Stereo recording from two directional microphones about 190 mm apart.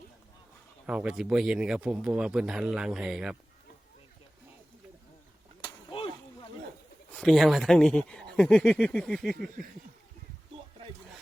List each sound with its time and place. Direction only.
0.9 s a man's voice: 5° right (ahead or behind)
5.6 s a sound: 25° left (ahead or behind)
7.2 s a man's voice: centre (ahead or behind)